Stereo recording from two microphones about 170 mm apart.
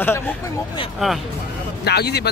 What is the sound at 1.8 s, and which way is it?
Speech, 70° left (ahead or behind).